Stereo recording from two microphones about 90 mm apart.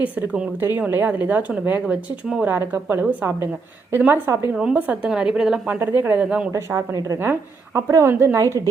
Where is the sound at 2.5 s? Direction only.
20° right (ahead or behind).